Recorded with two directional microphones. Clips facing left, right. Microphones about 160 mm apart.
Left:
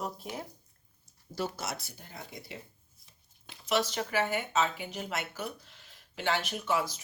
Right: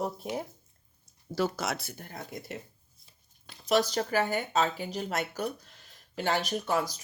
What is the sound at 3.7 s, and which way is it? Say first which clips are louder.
Speech: right 4 dB; 40° right (ahead or behind).